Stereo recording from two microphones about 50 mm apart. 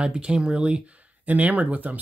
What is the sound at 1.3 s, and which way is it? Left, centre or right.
Speech, right.